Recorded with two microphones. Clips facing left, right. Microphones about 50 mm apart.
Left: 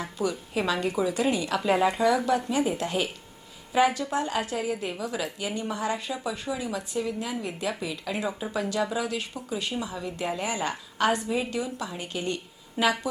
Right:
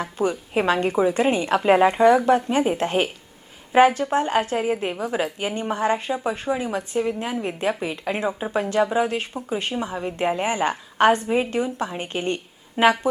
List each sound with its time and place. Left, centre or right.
0.0 s a woman's voice: right